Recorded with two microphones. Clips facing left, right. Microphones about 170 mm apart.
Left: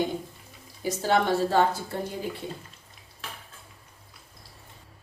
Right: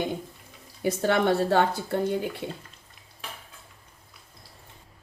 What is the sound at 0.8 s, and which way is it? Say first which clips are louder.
Speech: right 1 dB; 60° right (ahead or behind).